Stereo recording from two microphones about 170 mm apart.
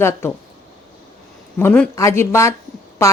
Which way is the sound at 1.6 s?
10° left (ahead or behind).